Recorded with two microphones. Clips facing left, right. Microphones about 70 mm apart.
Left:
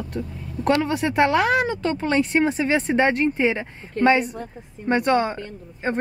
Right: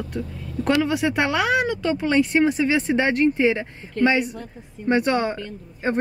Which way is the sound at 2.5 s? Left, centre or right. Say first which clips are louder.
Right 1 dB; left.